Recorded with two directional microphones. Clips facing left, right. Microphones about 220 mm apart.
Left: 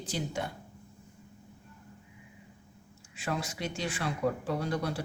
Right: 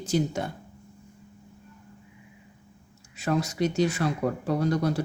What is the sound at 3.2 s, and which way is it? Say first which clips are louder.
Speech: right 9 dB; 40° right (ahead or behind).